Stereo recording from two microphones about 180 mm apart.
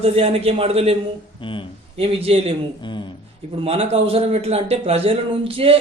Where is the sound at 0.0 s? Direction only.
35° right (ahead or behind).